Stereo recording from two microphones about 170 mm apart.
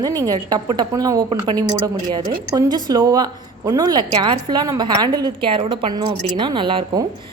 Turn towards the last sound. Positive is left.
turn(degrees=-25)  # may be behind; listen again after turning